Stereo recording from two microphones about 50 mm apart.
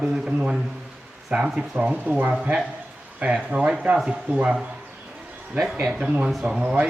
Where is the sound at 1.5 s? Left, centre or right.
Right.